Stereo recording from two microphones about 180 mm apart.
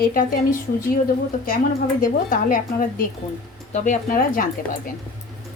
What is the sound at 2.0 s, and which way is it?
Speech, 50° left (ahead or behind).